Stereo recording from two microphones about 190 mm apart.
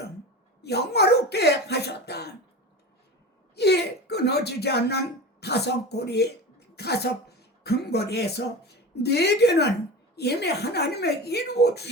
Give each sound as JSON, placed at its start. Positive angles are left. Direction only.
{"t": 0.6, "sound": "speech", "side_deg": 60}
{"t": 3.5, "sound": "speech", "side_deg": 60}